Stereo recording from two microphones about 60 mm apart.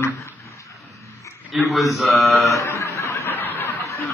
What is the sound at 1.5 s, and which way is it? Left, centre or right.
Speech, centre.